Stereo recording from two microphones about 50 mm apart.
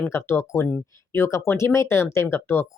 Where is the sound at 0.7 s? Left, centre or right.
Left.